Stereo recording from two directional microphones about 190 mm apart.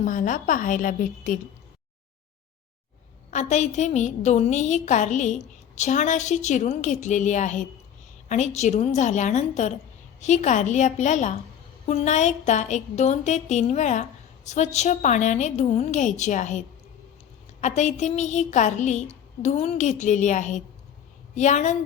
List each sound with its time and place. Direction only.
0.0 s a woman's voice: 45° left (ahead or behind)
3.3 s a woman's voice: 40° left (ahead or behind)